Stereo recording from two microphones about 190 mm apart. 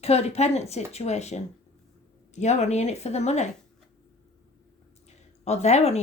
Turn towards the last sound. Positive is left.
turn(degrees=35)  # may be behind; listen again after turning